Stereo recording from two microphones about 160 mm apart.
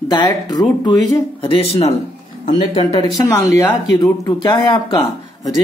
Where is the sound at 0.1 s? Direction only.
25° left (ahead or behind).